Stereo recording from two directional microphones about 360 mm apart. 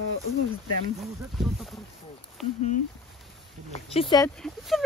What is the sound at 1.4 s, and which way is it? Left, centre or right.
Speech, centre.